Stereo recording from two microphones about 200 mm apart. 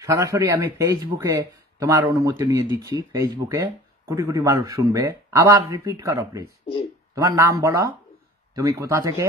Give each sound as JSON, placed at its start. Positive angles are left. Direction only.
{"t": 0.0, "sound": "speech", "side_deg": -15}
{"t": 6.6, "sound": "a sound", "side_deg": 25}
{"t": 7.2, "sound": "speech", "side_deg": -15}